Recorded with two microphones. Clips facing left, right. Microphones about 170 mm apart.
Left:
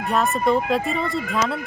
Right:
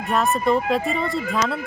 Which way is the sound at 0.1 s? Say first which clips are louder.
Even; centre (ahead or behind).